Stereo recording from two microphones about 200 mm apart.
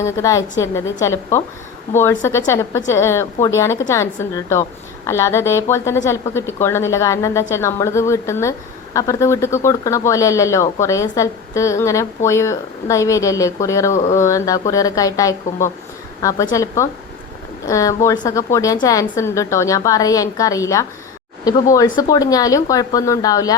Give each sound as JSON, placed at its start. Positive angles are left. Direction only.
{"t": 0.0, "sound": "a woman's voice", "side_deg": 15}